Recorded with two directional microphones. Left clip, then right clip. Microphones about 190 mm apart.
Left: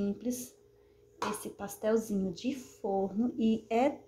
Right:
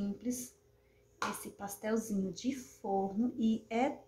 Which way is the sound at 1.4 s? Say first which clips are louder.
Left 5 dB; 15° left (ahead or behind).